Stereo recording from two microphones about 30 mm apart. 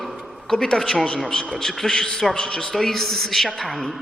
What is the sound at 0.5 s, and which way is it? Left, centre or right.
Speech, left.